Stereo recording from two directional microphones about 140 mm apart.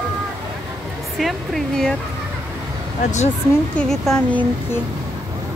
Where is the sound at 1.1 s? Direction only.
Centre (ahead or behind).